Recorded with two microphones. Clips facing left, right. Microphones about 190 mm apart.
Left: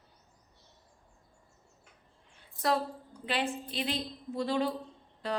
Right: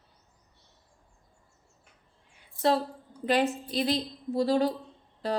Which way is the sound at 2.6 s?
30° right (ahead or behind).